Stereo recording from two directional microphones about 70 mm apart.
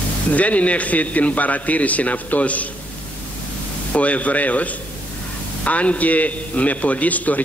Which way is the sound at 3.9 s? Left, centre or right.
Centre.